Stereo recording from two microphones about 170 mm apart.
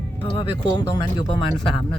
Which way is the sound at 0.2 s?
30° left (ahead or behind).